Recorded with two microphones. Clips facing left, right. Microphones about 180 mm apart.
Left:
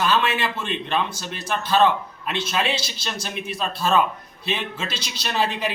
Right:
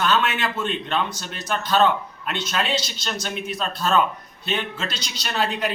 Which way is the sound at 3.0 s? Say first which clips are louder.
Right 2 dB; 10° left (ahead or behind).